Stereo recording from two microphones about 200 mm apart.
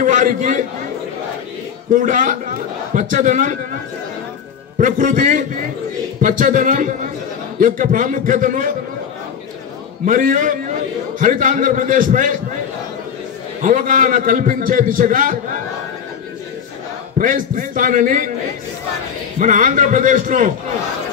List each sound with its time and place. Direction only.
0.0 s a man's voice: 40° right (ahead or behind)
2.0 s a man's voice: 40° right (ahead or behind)
4.7 s a man's voice: 40° right (ahead or behind)
10.0 s a man's voice: 40° right (ahead or behind)
13.6 s a man's voice: 40° right (ahead or behind)
17.2 s a man's voice: 40° right (ahead or behind)
19.3 s a man's voice: 40° right (ahead or behind)